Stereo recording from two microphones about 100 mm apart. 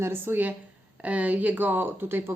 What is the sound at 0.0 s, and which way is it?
A woman's voice, 20° right (ahead or behind).